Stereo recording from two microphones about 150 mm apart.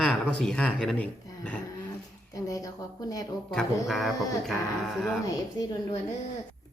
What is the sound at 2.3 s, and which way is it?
Speech, 25° left (ahead or behind).